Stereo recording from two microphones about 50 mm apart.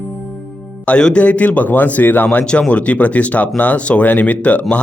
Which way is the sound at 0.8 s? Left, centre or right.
Left.